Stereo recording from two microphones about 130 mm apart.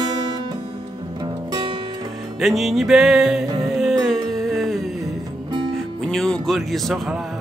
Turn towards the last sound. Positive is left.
turn(degrees=0)  # may be behind; listen again after turning